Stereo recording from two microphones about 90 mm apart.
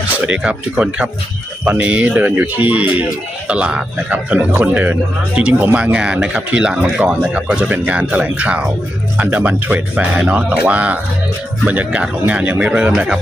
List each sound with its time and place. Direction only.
0.3 s speech: 10° right (ahead or behind)